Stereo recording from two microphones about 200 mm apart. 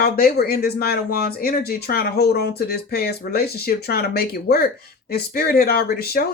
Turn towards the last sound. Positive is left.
turn(degrees=50)  # may be behind; listen again after turning